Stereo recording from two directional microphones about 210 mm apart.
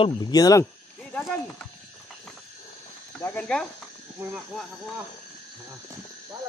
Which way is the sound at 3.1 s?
10° left (ahead or behind).